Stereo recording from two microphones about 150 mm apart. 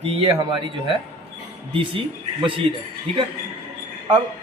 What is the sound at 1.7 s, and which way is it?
Speech, 35° right (ahead or behind).